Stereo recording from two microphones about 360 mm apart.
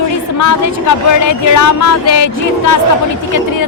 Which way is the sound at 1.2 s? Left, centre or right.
Left.